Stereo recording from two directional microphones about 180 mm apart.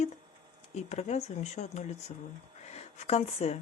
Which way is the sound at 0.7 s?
40° left (ahead or behind).